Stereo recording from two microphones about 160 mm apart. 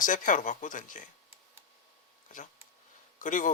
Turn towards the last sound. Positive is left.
turn(degrees=55)  # may be behind; listen again after turning